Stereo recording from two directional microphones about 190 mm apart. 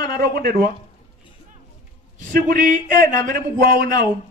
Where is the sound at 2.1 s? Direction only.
45° right (ahead or behind).